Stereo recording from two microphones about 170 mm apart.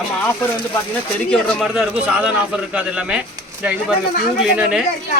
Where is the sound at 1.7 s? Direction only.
5° right (ahead or behind).